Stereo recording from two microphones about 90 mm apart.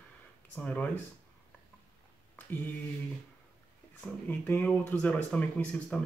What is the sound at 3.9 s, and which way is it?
Speech, 20° left (ahead or behind).